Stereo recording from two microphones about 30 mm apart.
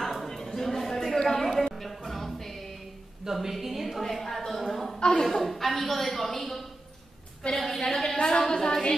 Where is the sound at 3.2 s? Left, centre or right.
Centre.